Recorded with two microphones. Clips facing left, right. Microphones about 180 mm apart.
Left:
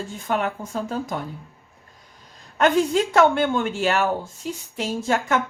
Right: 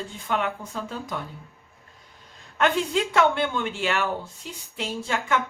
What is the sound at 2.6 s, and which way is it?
Speech, 40° left (ahead or behind).